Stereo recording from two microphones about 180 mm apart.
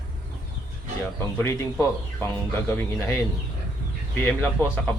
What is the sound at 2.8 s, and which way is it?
Speech, 15° left (ahead or behind).